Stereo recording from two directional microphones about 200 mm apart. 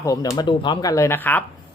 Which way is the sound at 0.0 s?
15° left (ahead or behind).